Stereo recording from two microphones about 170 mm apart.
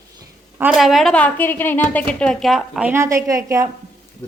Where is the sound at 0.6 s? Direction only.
5° right (ahead or behind).